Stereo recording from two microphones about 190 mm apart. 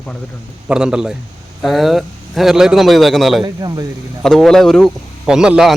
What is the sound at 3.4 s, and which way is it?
Speech, 20° right (ahead or behind).